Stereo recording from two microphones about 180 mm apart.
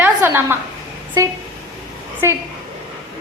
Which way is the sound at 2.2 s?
15° right (ahead or behind).